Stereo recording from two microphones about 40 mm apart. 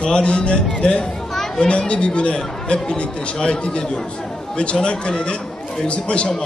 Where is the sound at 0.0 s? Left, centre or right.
Left.